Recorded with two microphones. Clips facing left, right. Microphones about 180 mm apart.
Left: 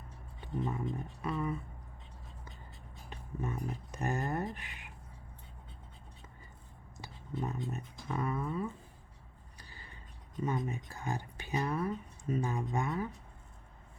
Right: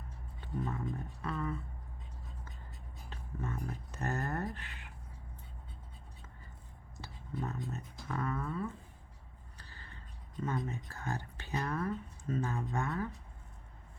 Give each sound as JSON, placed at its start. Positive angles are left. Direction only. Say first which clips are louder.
{"t": 0.4, "sound": "speech", "louder": "left 2 dB", "side_deg": 15}
{"t": 3.1, "sound": "speech", "louder": "left 2 dB", "side_deg": 15}
{"t": 6.9, "sound": "a sound", "louder": "left 1 dB", "side_deg": 15}
{"t": 7.7, "sound": "speech", "louder": "left 2 dB", "side_deg": 15}
{"t": 9.6, "sound": "a sound", "louder": "left 1 dB", "side_deg": 15}
{"t": 10.4, "sound": "speech", "louder": "left 2 dB", "side_deg": 15}